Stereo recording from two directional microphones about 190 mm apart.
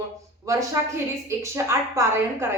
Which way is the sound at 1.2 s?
15° right (ahead or behind).